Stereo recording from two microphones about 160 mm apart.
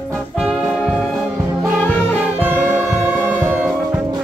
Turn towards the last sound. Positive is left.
turn(degrees=-10)  # may be behind; listen again after turning